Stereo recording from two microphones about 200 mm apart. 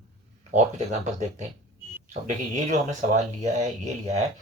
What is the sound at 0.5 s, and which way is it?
Speech, 35° right (ahead or behind).